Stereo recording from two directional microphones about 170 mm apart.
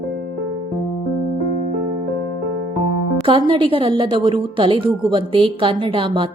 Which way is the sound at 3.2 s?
30° right (ahead or behind).